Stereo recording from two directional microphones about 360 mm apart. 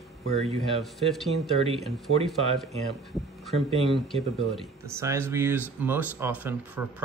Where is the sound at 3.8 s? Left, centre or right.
Centre.